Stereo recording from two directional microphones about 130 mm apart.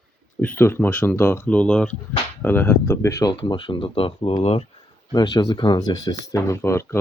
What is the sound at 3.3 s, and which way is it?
Speech, 40° left (ahead or behind).